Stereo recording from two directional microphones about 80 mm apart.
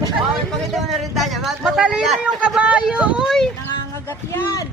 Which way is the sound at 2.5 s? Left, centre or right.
Centre.